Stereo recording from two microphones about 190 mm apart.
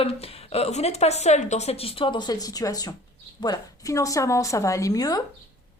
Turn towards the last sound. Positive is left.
turn(degrees=20)  # may be behind; listen again after turning